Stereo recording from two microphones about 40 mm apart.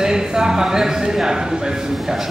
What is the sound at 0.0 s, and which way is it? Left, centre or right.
A man's voice, centre.